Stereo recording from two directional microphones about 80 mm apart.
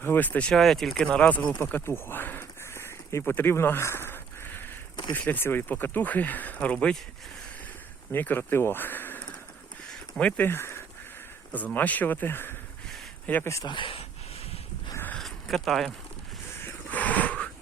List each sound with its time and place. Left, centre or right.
0.0 s speech: left
0.6 s speech: centre
0.9 s speech: centre; by 3.3 s left
3.3 s a sound: left
5.1 s speech: left
8.1 s speech: left
13.4 s speech: left
13.7 s speech: left
15.2 s a sound: centre
16.6 s a sound: left